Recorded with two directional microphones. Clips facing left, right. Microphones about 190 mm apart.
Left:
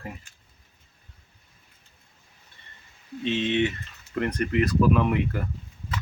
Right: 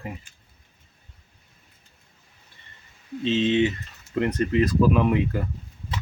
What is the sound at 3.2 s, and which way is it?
Speech, 30° right (ahead or behind).